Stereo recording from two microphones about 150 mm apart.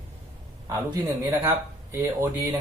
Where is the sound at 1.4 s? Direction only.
15° right (ahead or behind).